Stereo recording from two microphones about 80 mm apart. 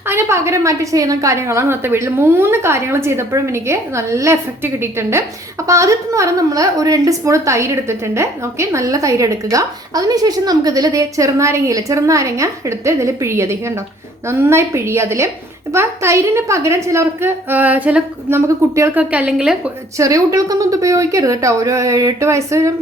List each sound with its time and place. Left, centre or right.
0.1 s a woman's voice: right
18.3 s a woman's voice: right
18.9 s a woman's voice: centre
20.0 s a woman's voice: right